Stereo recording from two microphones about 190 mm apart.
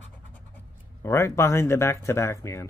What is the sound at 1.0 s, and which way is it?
Speech, 15° left (ahead or behind).